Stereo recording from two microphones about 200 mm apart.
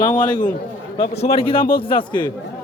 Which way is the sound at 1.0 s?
30° left (ahead or behind).